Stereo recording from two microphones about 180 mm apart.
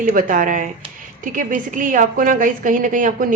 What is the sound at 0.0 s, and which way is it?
A woman's voice, 45° right (ahead or behind).